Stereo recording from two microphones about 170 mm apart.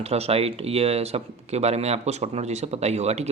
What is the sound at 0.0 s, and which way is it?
Speech, 40° right (ahead or behind).